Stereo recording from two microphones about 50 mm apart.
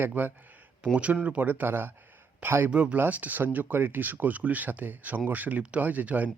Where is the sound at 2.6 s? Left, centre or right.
Right.